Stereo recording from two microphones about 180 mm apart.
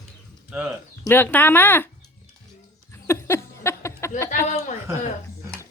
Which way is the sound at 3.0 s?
15° left (ahead or behind).